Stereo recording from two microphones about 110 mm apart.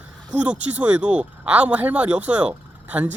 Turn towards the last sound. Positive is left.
turn(degrees=-15)  # may be behind; listen again after turning